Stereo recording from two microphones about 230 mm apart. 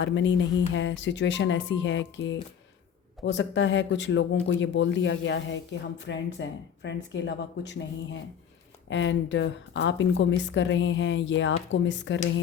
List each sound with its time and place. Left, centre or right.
0.0 s speech: left